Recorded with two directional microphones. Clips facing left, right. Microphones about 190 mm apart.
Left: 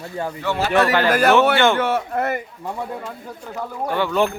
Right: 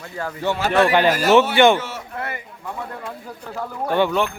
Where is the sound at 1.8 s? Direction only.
55° left (ahead or behind).